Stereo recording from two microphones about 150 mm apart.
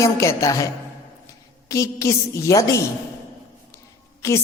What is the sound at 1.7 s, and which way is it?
A woman's voice, 20° left (ahead or behind).